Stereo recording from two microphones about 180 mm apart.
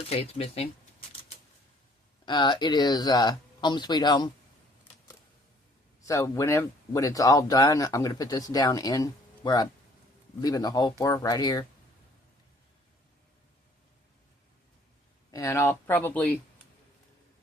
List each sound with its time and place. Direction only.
0.1 s speech: 35° left (ahead or behind)
2.2 s speech: 25° left (ahead or behind)
6.0 s speech: 20° left (ahead or behind)
15.3 s speech: 15° left (ahead or behind)